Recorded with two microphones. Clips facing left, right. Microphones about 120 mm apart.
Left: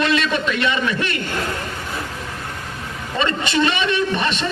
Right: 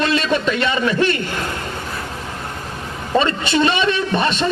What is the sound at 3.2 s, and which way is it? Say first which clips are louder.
A man's voice: right 3 dB; 35° right (ahead or behind).